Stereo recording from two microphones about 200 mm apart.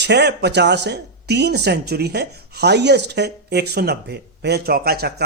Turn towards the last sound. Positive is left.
turn(degrees=-50)  # may be behind; listen again after turning